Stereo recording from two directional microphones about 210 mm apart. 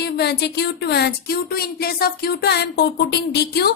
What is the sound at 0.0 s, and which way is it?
Speech, 50° left (ahead or behind).